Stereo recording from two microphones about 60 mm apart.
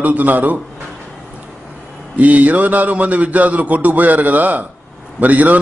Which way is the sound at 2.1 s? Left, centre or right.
Right.